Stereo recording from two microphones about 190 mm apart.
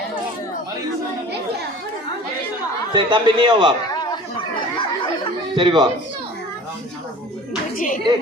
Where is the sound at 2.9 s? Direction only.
25° right (ahead or behind).